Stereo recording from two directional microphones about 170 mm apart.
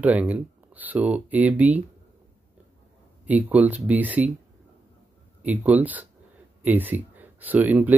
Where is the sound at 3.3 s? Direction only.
10° right (ahead or behind).